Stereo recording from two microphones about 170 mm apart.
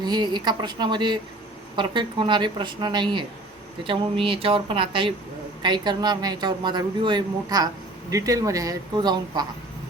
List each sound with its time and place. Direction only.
0.0 s a woman's voice: 25° right (ahead or behind)